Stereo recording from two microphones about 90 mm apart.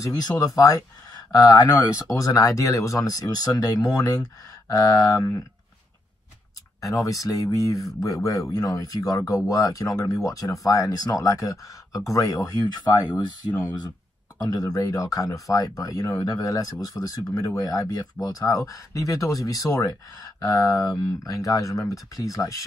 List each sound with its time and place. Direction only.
0.0 s speech: 45° left (ahead or behind)
6.8 s speech: 40° left (ahead or behind)
14.4 s speech: 45° left (ahead or behind)